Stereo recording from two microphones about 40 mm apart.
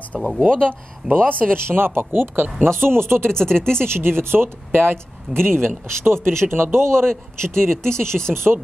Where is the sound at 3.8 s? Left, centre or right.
Right.